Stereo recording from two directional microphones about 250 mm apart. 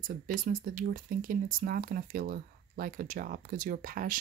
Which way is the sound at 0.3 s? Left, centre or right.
Right.